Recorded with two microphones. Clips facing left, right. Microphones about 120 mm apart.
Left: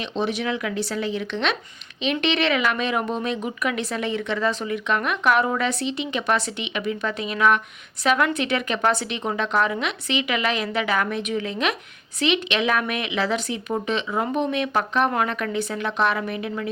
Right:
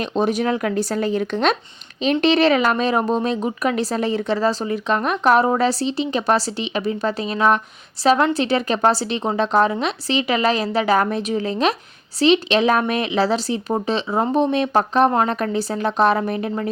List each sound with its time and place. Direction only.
0.0 s a woman's voice: 45° right (ahead or behind)